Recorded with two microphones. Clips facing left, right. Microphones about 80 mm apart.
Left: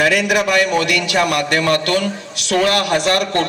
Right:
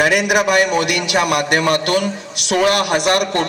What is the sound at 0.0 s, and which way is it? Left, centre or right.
A man's voice, centre.